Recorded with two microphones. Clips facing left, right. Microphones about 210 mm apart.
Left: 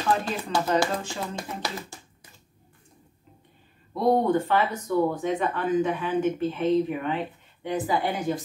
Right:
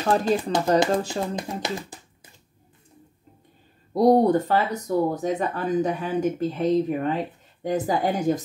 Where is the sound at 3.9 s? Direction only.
40° right (ahead or behind).